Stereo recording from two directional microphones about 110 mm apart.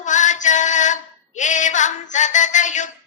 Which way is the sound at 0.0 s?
90° left.